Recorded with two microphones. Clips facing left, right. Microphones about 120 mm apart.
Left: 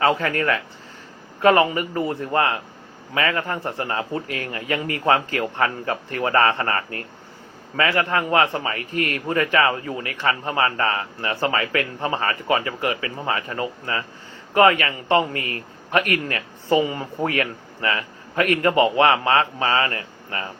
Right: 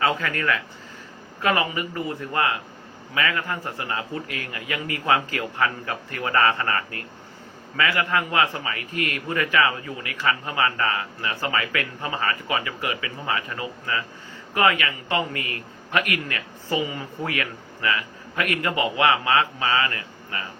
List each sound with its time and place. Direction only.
0.0 s a man's voice: 40° left (ahead or behind)